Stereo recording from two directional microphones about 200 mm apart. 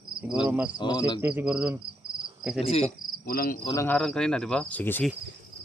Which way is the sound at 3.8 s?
5° left (ahead or behind).